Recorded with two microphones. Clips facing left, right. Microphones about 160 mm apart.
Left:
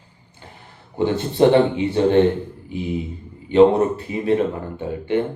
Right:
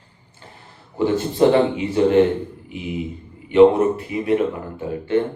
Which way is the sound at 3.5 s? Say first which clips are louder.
Right 1 dB; 25° left (ahead or behind).